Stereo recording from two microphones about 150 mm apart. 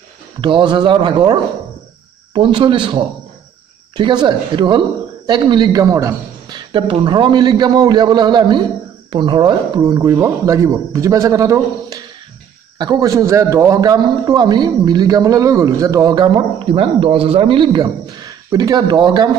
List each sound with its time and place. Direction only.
0.4 s a man's voice: 30° right (ahead or behind)
6.7 s a man's voice: 35° right (ahead or behind)